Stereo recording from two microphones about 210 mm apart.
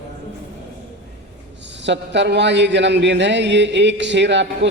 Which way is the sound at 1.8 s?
55° right (ahead or behind).